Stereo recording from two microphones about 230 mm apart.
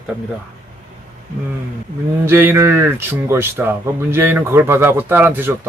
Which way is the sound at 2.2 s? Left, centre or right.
Centre.